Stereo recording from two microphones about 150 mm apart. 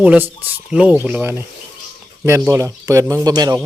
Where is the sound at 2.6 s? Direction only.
20° right (ahead or behind).